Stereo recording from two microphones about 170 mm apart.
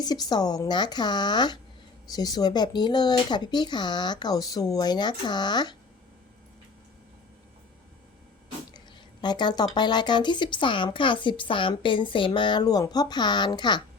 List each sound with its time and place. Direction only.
0.0 s speech: 25° left (ahead or behind)
9.2 s speech: 25° left (ahead or behind)